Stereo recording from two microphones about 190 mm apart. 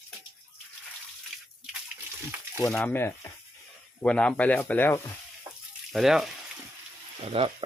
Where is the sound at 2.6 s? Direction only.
5° left (ahead or behind).